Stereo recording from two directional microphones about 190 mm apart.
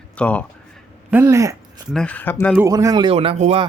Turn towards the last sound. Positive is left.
turn(degrees=-30)  # may be behind; listen again after turning